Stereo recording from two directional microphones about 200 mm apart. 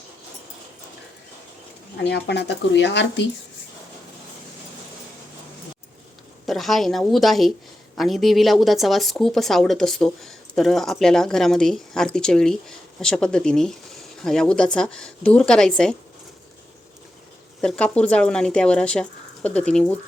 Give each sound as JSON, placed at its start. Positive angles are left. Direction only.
{"t": 2.0, "sound": "speech", "side_deg": 60}
{"t": 6.4, "sound": "speech", "side_deg": 0}
{"t": 17.6, "sound": "speech", "side_deg": 5}